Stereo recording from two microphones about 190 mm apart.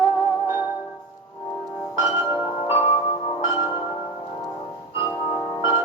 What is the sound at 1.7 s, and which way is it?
Music, 10° right (ahead or behind).